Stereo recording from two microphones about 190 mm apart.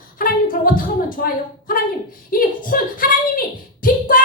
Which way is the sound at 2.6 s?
45° left (ahead or behind).